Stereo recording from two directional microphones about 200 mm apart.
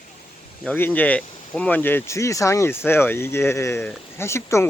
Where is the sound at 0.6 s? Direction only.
10° left (ahead or behind).